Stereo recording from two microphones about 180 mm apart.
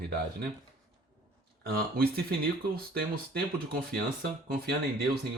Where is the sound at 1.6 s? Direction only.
60° right (ahead or behind).